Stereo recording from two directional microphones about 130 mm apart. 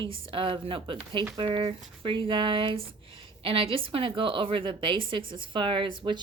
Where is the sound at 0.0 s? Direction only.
40° right (ahead or behind).